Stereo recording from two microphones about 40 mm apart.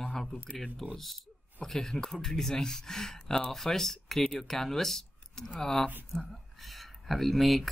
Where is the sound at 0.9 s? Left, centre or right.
Centre.